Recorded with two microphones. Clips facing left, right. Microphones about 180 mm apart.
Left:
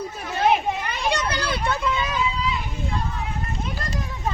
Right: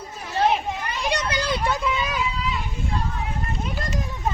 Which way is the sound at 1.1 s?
20° right (ahead or behind).